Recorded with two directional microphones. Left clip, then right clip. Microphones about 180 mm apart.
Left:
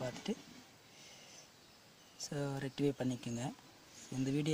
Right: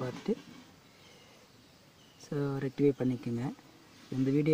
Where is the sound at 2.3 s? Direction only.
25° left (ahead or behind).